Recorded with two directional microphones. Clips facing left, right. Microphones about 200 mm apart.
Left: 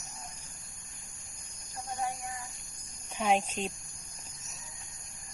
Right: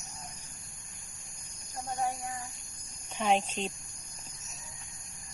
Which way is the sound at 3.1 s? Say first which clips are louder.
Even; 5° left (ahead or behind).